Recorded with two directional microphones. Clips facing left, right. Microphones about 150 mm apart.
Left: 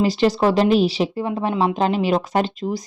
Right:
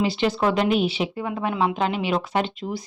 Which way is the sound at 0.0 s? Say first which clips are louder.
Left 4 dB; 40° left (ahead or behind).